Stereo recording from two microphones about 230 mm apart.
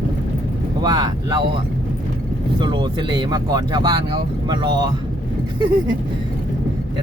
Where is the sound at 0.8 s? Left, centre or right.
Centre.